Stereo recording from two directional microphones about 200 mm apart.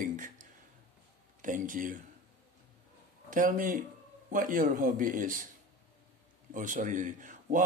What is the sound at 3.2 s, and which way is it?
Speech, 40° right (ahead or behind).